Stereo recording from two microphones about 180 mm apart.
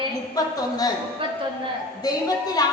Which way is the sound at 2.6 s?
20° left (ahead or behind).